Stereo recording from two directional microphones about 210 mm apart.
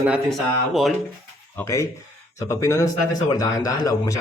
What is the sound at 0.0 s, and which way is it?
Speech, 5° right (ahead or behind).